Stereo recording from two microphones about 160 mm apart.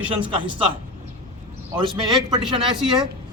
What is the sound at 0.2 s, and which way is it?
Speech, 30° right (ahead or behind).